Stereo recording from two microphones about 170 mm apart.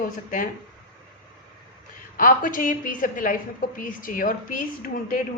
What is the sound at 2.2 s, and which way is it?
Speech, 55° left (ahead or behind).